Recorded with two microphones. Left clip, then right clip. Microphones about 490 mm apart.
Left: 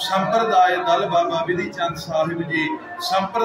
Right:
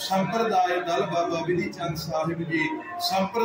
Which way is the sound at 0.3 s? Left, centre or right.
Right.